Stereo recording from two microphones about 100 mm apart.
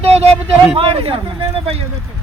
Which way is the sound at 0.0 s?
85° right.